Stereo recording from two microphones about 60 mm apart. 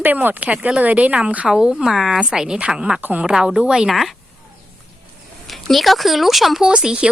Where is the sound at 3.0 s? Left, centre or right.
Right.